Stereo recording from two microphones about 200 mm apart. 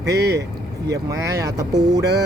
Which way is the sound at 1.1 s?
15° right (ahead or behind).